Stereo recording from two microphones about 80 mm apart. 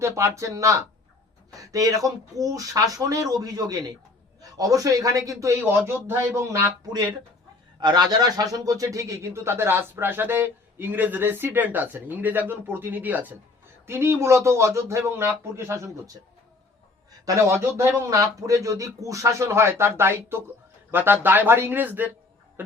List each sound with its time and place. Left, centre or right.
0.0 s speech: right
7.8 s a man's voice: right
17.5 s a man's voice: right